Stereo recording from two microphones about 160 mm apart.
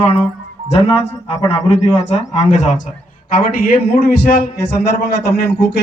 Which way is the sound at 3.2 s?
60° left (ahead or behind).